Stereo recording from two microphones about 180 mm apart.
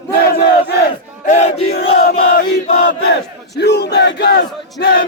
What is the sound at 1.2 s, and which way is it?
Battle cry, 40° left (ahead or behind).